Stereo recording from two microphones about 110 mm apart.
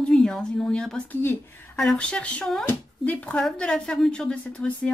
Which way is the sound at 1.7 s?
5° left (ahead or behind).